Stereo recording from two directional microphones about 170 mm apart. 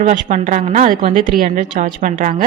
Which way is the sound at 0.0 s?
45° right (ahead or behind).